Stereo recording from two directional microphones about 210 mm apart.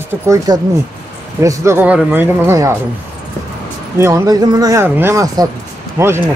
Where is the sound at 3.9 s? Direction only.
15° right (ahead or behind).